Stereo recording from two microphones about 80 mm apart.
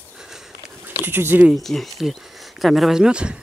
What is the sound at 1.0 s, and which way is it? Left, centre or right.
Speech, right.